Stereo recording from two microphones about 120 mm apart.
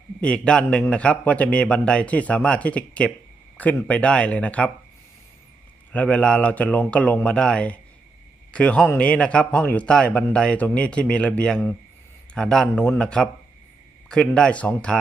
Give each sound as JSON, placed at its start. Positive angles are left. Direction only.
{"t": 0.2, "sound": "a man's voice", "side_deg": 10}
{"t": 5.9, "sound": "a man's voice", "side_deg": 10}
{"t": 14.3, "sound": "a man's voice", "side_deg": 10}